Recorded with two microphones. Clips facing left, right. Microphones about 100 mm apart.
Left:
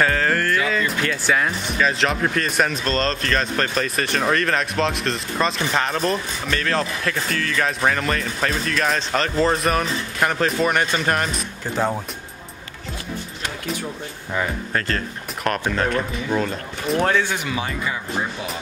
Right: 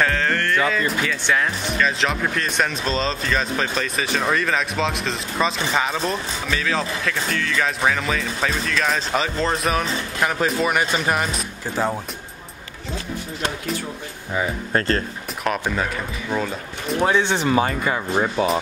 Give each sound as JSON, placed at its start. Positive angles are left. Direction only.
{"t": 0.0, "sound": "speech", "side_deg": 0}
{"t": 14.7, "sound": "speech", "side_deg": -35}
{"t": 15.7, "sound": "speech", "side_deg": -5}
{"t": 17.1, "sound": "speech", "side_deg": -25}
{"t": 17.5, "sound": "speech", "side_deg": -45}